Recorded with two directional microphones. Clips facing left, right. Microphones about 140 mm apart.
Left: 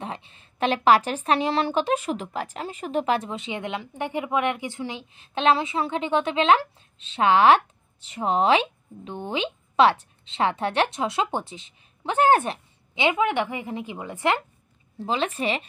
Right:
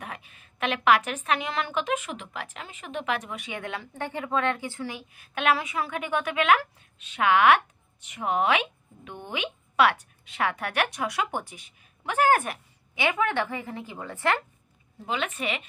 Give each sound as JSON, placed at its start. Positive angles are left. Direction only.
{"t": 0.0, "sound": "speech", "side_deg": 30}
{"t": 15.0, "sound": "a woman's voice", "side_deg": 30}